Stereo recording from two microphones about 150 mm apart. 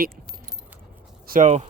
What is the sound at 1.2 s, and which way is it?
Speech, 70° right (ahead or behind).